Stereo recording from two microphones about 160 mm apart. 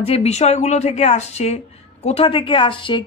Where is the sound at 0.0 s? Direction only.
40° left (ahead or behind).